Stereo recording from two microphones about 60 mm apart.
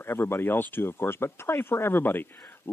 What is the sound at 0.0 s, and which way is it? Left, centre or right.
Speech, left.